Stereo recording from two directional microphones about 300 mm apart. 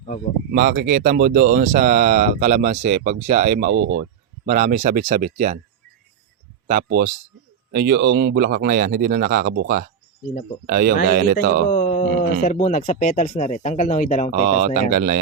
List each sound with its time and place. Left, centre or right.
0.5 s speech: right
6.7 s speech: right
11.7 s a sound: left
12.4 s speech: left
14.3 s speech: right